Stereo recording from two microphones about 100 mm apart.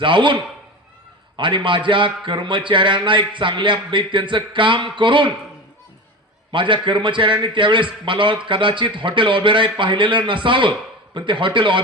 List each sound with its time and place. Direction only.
0.0 s a man's voice: 55° right (ahead or behind)
1.4 s a man's voice: 55° right (ahead or behind)
6.5 s a man's voice: 55° right (ahead or behind)